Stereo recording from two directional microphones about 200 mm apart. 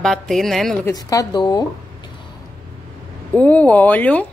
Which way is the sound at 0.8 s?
15° left (ahead or behind).